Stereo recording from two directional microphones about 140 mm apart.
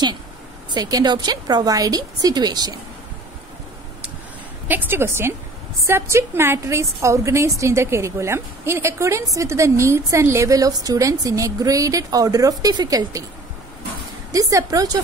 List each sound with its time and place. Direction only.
0.7 s a woman's voice: 30° right (ahead or behind)
4.6 s a woman's voice: 15° right (ahead or behind)
14.3 s a woman's voice: 25° right (ahead or behind)